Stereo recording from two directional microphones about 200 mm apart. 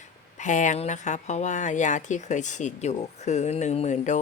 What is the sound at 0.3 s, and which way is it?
Speech, 40° left (ahead or behind).